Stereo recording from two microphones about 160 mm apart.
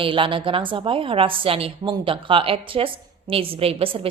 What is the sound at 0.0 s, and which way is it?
A woman's voice, 30° right (ahead or behind).